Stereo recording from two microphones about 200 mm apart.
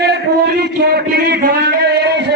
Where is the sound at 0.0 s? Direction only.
55° right (ahead or behind).